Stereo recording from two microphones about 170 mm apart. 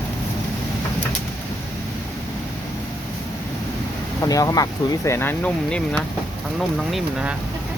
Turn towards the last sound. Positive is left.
turn(degrees=-5)  # may be behind; listen again after turning